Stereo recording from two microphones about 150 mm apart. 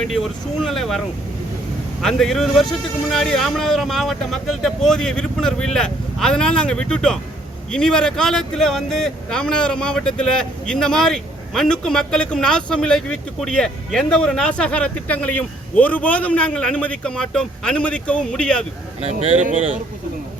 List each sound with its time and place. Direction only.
0.0 s speech: centre (ahead or behind)